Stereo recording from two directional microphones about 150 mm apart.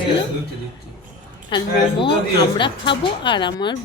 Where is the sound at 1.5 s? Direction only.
30° left (ahead or behind).